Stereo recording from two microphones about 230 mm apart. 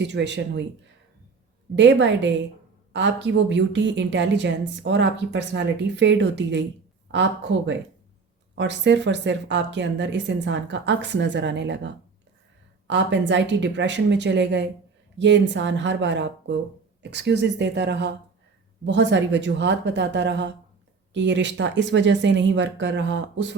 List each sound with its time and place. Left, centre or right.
0.0 s a woman's voice: right
1.7 s a woman's voice: right
12.9 s a woman's voice: right